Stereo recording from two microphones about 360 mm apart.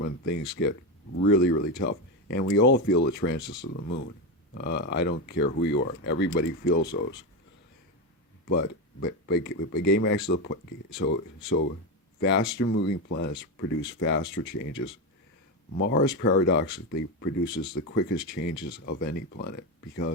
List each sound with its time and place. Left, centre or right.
0.0 s speech: left
8.4 s speech: left
12.2 s speech: left
15.8 s speech: left